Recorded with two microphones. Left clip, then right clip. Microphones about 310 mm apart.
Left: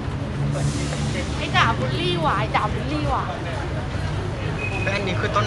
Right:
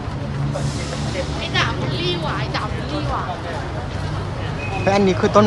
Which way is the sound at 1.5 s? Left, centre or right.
Centre.